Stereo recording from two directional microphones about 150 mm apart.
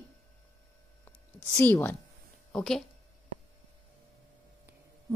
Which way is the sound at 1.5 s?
15° left (ahead or behind).